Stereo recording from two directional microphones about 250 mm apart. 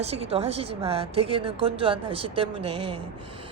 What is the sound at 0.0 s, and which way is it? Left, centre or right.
A woman's voice, right.